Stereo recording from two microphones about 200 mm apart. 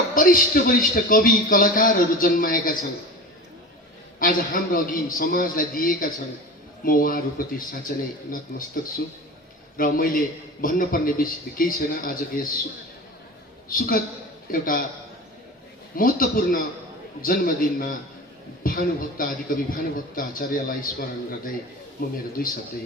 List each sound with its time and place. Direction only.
0.1 s a man's voice: 45° left (ahead or behind)
4.2 s a man's voice: 45° left (ahead or behind)
13.7 s a man's voice: 45° left (ahead or behind)
16.0 s a man's voice: 45° left (ahead or behind)